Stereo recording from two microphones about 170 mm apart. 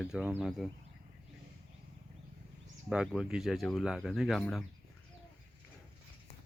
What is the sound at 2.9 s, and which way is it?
Speech, 5° right (ahead or behind).